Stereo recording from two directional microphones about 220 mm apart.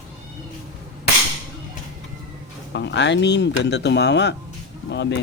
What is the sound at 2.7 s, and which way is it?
Speech, 50° left (ahead or behind).